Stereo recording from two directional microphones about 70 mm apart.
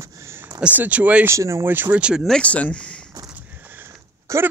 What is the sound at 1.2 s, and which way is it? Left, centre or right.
Speech, right.